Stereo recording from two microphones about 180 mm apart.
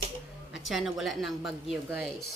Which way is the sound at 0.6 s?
Centre (ahead or behind).